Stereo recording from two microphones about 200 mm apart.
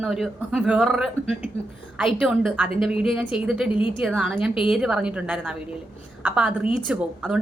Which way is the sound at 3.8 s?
25° left (ahead or behind).